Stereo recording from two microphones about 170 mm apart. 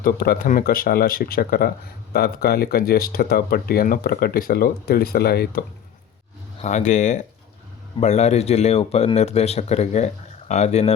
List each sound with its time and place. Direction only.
0.0 s speech: 55° left (ahead or behind)
6.6 s speech: 45° left (ahead or behind)